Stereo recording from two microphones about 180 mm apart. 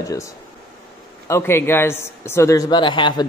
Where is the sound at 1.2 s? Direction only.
15° left (ahead or behind).